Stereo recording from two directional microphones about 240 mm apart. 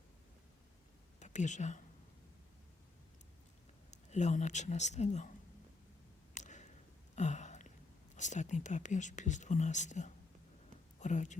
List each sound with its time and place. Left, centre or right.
1.2 s speech: left
3.9 s speech: left
6.3 s a sound: left
8.1 s speech: left